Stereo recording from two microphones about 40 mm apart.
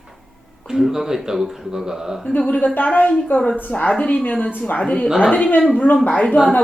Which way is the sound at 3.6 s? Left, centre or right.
Left.